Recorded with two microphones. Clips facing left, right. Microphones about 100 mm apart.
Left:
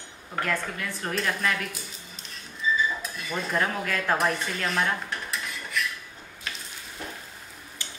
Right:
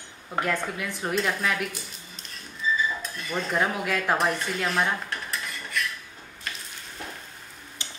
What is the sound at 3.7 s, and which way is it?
Dishes, 10° right (ahead or behind).